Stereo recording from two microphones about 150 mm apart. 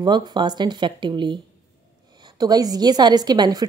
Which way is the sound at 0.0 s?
30° right (ahead or behind).